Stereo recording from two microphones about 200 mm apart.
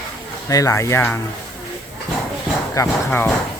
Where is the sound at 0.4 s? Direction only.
15° left (ahead or behind).